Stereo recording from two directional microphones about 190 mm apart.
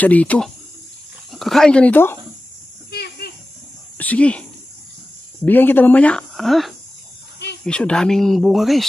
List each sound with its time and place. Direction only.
0.0 s speech: 5° left (ahead or behind)
2.9 s a sound: 55° left (ahead or behind)
4.0 s speech: 5° left (ahead or behind)